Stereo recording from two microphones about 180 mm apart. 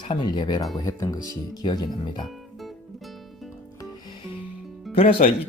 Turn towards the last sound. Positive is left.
turn(degrees=30)  # may be behind; listen again after turning